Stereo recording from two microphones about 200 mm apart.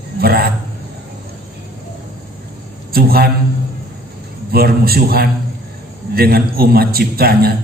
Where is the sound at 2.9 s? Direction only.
50° right (ahead or behind).